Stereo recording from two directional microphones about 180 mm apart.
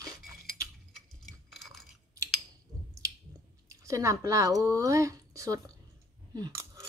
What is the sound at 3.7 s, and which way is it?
Speech, 15° right (ahead or behind).